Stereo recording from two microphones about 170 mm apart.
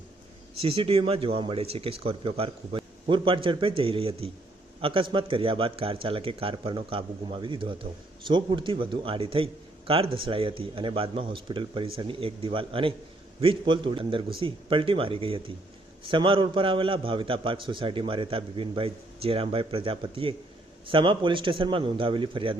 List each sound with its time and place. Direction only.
0.6 s a man's voice: 35° right (ahead or behind)